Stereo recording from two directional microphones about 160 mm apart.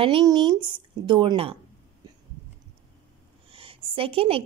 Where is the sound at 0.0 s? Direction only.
30° right (ahead or behind).